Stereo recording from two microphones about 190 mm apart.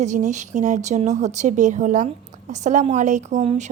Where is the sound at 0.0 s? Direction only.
40° right (ahead or behind).